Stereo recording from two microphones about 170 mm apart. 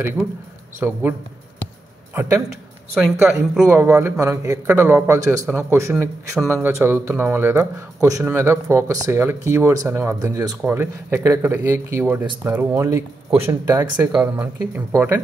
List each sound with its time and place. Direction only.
0.7 s a man's voice: 15° right (ahead or behind)
2.1 s speech: 20° right (ahead or behind)
2.5 s a sound: 5° right (ahead or behind)
3.2 s a man's voice: 10° right (ahead or behind); by 14.2 s 25° right (ahead or behind)
14.2 s a man's voice: 10° right (ahead or behind)